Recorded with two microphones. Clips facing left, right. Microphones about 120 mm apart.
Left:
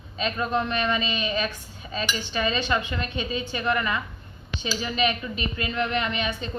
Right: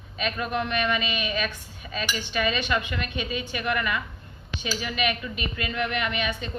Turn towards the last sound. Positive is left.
turn(degrees=30)  # may be behind; listen again after turning